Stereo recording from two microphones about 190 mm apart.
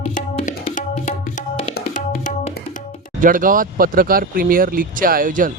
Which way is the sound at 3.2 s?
45° right (ahead or behind).